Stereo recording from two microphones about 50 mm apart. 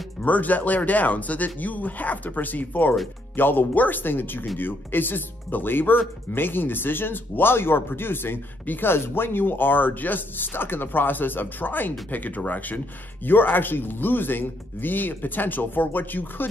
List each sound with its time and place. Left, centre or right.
0.2 s speech: left